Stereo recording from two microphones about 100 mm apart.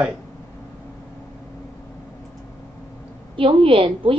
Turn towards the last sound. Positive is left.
turn(degrees=-60)  # may be behind; listen again after turning